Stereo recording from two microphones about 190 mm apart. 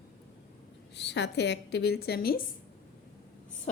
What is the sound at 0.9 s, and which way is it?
A woman's voice, 65° left (ahead or behind).